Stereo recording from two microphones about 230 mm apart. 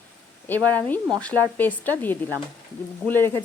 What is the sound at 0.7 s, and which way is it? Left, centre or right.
Speech, centre.